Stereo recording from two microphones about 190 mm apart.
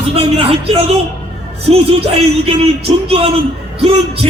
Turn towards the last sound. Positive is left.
turn(degrees=-30)  # may be behind; listen again after turning